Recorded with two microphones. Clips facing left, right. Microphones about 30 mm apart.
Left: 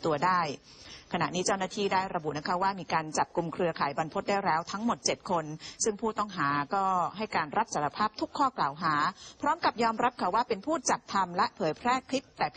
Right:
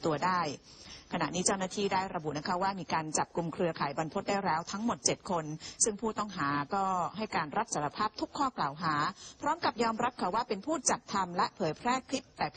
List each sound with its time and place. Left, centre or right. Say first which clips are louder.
0.0 s a woman's voice: left 3 dB; centre